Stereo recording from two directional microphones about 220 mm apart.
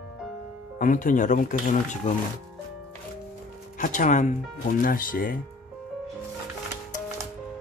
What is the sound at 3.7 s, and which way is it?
Speech, 35° left (ahead or behind).